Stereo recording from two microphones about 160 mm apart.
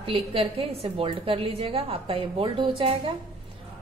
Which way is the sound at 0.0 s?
35° right (ahead or behind).